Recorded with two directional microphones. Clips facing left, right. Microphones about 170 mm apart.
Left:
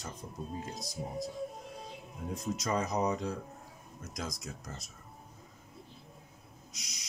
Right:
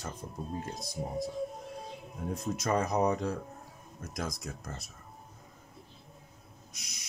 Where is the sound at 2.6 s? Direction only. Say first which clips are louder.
Right 4 dB; 55° right (ahead or behind).